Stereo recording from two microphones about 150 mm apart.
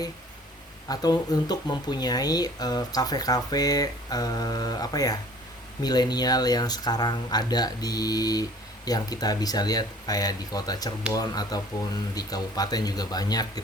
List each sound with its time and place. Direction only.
0.9 s speech: 25° left (ahead or behind)